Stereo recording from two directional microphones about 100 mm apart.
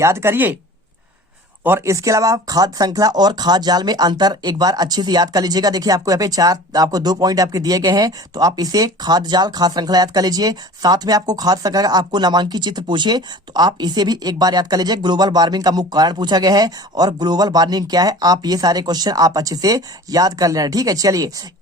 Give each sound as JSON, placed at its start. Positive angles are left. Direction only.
{"t": 0.0, "sound": "speech", "side_deg": -25}
{"t": 1.6, "sound": "speech", "side_deg": -25}